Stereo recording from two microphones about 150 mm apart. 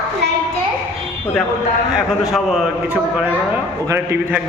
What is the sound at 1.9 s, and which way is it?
A man's voice, centre (ahead or behind).